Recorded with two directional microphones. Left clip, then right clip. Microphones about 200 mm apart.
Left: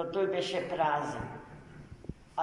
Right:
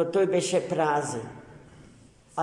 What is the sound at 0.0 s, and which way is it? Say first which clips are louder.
A man's voice: right 7 dB; 70° right (ahead or behind).